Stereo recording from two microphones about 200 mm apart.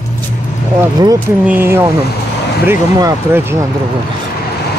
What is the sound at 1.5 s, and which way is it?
Speech, 10° right (ahead or behind).